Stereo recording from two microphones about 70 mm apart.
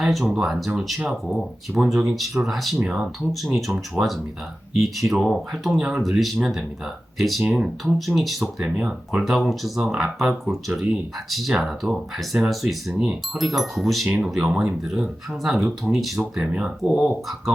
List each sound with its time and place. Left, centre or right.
0.0 s speech: centre
7.4 s speech: centre
7.9 s speech: centre
8.8 s speech: centre
9.2 s speech: centre
14.4 s speech: centre
15.4 s speech: centre